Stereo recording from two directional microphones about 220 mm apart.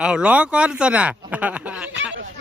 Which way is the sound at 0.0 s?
5° right (ahead or behind).